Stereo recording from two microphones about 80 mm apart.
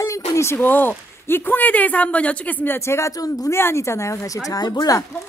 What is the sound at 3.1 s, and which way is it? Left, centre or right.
Speech, left.